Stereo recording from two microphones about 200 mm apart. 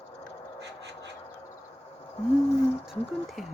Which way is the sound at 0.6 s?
60° right (ahead or behind).